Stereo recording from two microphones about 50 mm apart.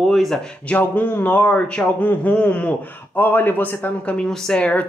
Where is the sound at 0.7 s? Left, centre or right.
Left.